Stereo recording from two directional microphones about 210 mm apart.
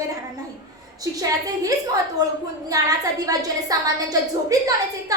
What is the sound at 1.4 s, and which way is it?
A woman's voice, 15° right (ahead or behind).